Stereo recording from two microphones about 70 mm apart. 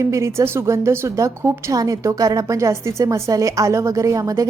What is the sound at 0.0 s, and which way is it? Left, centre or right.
A woman's voice, right.